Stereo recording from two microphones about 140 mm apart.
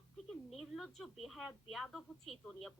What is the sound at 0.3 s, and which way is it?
A woman's voice, centre (ahead or behind).